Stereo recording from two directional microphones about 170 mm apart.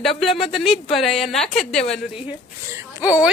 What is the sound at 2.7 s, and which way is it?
Speech, 10° right (ahead or behind).